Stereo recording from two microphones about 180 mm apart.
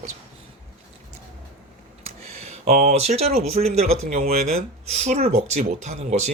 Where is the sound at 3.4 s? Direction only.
35° right (ahead or behind).